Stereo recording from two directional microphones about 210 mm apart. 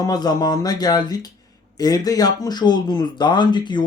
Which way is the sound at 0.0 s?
20° left (ahead or behind).